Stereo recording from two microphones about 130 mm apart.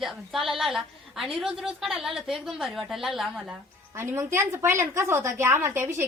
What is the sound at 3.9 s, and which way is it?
A woman's voice, 20° right (ahead or behind).